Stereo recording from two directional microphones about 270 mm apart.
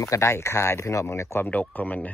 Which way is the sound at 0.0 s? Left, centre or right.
Centre.